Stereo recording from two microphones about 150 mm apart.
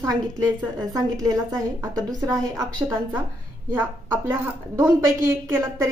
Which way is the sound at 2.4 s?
20° right (ahead or behind).